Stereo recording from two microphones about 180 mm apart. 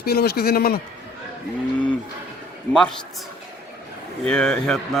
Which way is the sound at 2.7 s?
5° left (ahead or behind).